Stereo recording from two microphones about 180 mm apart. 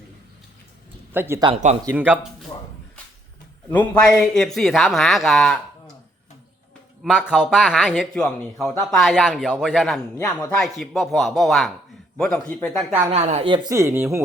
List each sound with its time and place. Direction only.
1.1 s speech: 10° right (ahead or behind)
3.7 s speech: 5° left (ahead or behind)
7.0 s speech: 5° right (ahead or behind)
10.2 s speech: 10° left (ahead or behind)
12.7 s speech: 5° right (ahead or behind)
13.1 s speech: 35° right (ahead or behind); by 14.2 s 15° right (ahead or behind)